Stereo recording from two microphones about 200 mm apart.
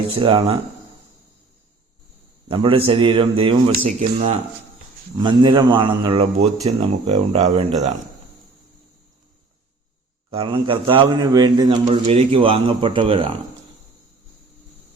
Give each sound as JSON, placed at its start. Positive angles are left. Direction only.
{"t": 0.2, "sound": "a man's voice", "side_deg": -25}
{"t": 2.5, "sound": "a man's voice", "side_deg": -25}
{"t": 5.1, "sound": "a man's voice", "side_deg": -20}
{"t": 10.3, "sound": "a man's voice", "side_deg": -25}